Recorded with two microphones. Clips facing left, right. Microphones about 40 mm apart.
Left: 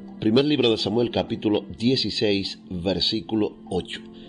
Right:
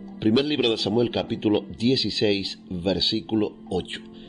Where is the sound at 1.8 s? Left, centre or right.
Centre.